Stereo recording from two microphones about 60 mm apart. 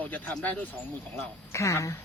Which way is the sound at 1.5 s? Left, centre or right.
Left.